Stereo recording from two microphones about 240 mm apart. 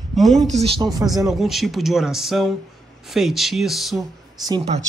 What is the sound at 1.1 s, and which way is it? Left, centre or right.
A man's voice, centre.